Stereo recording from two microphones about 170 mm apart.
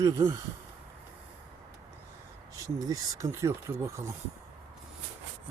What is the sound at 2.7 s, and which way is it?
Speech, 20° right (ahead or behind).